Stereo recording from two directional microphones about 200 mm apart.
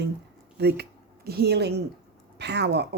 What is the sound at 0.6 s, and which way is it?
Speech, 55° right (ahead or behind).